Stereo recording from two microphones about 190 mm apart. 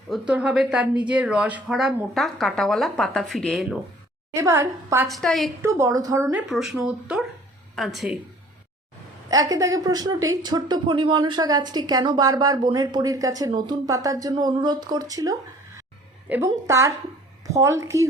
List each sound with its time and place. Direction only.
0.1 s a woman's voice: 5° right (ahead or behind)
4.4 s a woman's voice: 15° right (ahead or behind)
5.0 s a woman's voice: centre (ahead or behind)
5.6 s a woman's voice: 15° right (ahead or behind)
6.5 s a woman's voice: centre (ahead or behind)
9.3 s a woman's voice: 20° right (ahead or behind)